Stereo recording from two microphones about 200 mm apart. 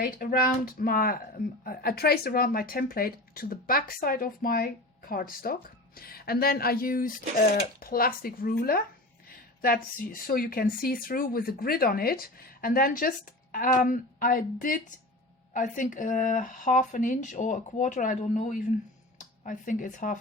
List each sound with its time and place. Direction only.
0.0 s speech: 45° left (ahead or behind)